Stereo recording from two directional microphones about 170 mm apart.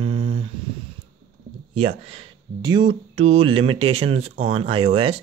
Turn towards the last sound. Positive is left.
turn(degrees=-35)  # may be behind; listen again after turning